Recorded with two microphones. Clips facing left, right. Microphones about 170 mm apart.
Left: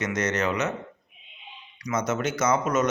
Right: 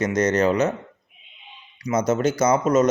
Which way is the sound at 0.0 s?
35° right (ahead or behind).